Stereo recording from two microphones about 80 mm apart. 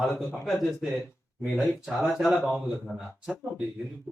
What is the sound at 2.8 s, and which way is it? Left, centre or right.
Speech, centre.